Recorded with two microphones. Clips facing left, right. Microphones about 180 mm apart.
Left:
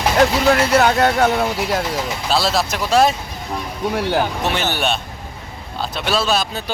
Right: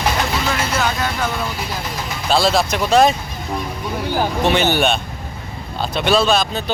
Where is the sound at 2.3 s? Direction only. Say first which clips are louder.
Right 3 dB; centre (ahead or behind).